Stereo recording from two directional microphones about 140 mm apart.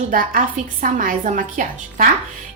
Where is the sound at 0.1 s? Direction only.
75° right (ahead or behind).